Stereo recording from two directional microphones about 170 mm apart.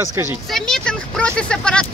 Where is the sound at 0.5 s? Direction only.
Centre (ahead or behind).